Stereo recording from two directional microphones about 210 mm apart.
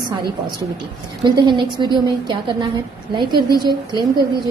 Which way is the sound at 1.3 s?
20° right (ahead or behind).